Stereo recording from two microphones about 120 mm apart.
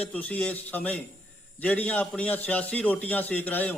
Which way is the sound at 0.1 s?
10° left (ahead or behind).